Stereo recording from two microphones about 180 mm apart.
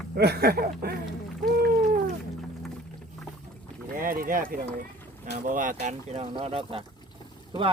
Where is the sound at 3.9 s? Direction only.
50° right (ahead or behind).